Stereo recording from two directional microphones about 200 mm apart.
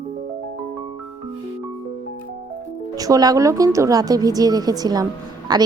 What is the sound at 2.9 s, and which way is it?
Speech, 20° right (ahead or behind).